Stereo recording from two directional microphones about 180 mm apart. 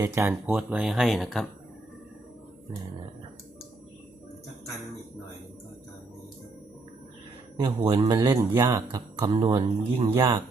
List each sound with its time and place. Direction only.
0.0 s speech: 15° right (ahead or behind)
7.9 s speech: 25° right (ahead or behind)